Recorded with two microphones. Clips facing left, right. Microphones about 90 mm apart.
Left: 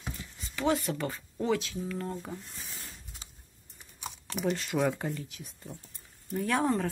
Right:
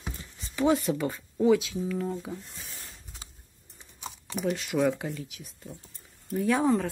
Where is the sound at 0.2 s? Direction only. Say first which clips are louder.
Right 5 dB; 25° right (ahead or behind); by 2.3 s 5° right (ahead or behind).